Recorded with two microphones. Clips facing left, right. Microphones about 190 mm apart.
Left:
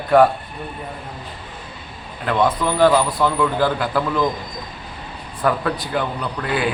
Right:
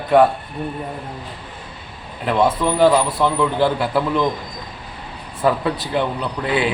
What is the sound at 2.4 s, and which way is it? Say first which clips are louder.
Speech: right 1 dB; 25° right (ahead or behind).